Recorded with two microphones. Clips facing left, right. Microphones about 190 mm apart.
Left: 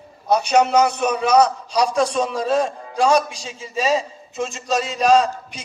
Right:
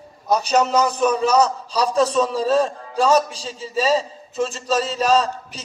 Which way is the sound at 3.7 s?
10° left (ahead or behind).